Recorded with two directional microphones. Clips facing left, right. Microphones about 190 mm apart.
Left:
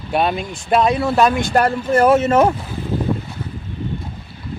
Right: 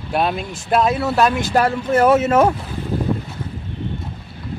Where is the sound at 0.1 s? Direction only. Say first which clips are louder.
Left 1 dB; centre (ahead or behind).